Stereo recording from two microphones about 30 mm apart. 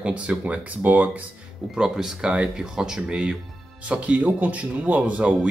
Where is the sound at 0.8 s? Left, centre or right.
Right.